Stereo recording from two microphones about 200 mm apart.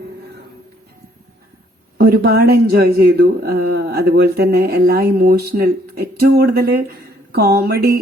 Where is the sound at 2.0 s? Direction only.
50° right (ahead or behind).